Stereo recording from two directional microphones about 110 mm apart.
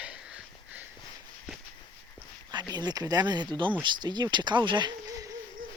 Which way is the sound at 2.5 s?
40° right (ahead or behind).